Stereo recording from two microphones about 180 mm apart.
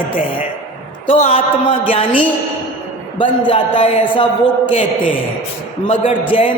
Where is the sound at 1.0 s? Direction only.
35° left (ahead or behind).